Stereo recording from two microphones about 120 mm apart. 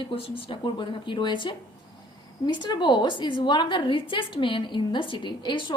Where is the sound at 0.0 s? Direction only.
45° left (ahead or behind).